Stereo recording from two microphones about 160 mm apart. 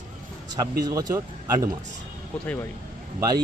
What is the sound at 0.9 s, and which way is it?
Speech, 20° right (ahead or behind).